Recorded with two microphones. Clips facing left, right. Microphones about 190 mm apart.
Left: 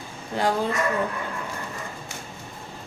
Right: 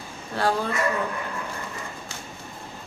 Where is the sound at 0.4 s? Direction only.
15° left (ahead or behind).